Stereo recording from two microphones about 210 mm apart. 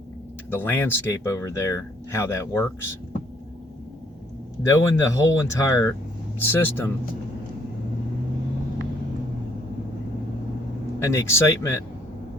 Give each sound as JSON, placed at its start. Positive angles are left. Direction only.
{"t": 0.5, "sound": "speech", "side_deg": 10}
{"t": 4.6, "sound": "speech", "side_deg": 15}
{"t": 11.0, "sound": "speech", "side_deg": 15}